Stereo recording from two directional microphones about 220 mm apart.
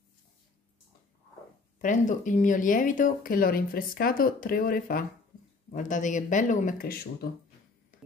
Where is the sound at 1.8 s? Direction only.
35° left (ahead or behind).